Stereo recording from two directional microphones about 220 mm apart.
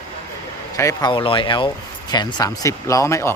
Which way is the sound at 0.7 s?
15° left (ahead or behind).